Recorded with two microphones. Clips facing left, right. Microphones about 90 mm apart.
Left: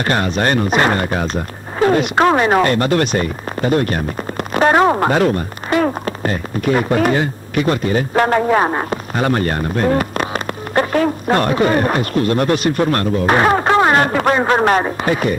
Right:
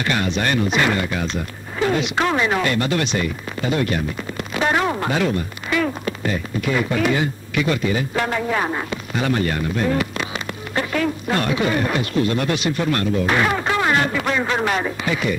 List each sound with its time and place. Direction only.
0.0 s speech: 45° left (ahead or behind)